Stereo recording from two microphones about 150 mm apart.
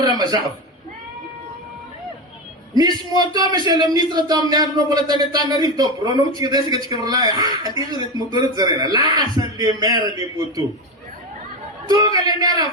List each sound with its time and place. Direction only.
0.0 s a sound: 30° right (ahead or behind)
2.7 s a man's voice: 25° right (ahead or behind)
11.9 s a man's voice: 25° right (ahead or behind)